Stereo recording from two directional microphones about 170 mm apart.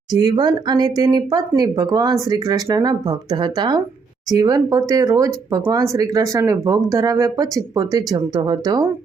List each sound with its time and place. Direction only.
0.1 s speech: 25° right (ahead or behind)